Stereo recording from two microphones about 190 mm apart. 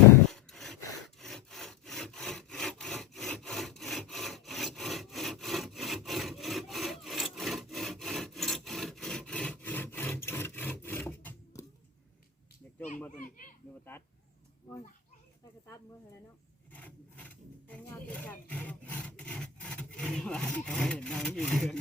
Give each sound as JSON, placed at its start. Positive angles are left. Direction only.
{"t": 0.3, "sound": "sawing", "side_deg": 0}
{"t": 16.7, "sound": "speech", "side_deg": 10}